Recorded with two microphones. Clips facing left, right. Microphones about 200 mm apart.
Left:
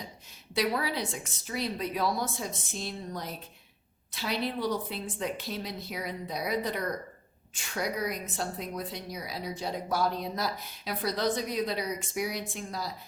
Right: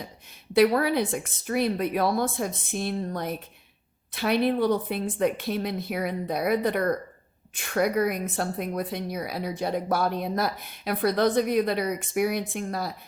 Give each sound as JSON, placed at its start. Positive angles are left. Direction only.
{"t": 0.5, "sound": "speech", "side_deg": -55}